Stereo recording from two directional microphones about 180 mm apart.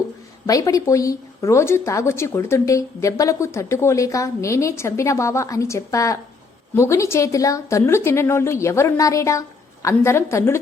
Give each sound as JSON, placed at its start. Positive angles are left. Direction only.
{"t": 0.4, "sound": "a woman's voice", "side_deg": 20}